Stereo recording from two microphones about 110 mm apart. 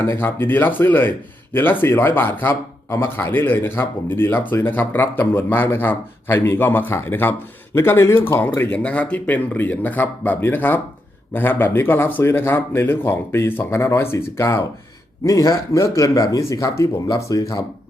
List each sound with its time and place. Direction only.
0.0 s a man's voice: 20° left (ahead or behind)